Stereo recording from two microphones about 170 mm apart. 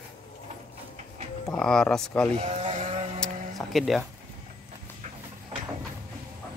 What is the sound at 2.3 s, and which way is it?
Sheep, 35° right (ahead or behind).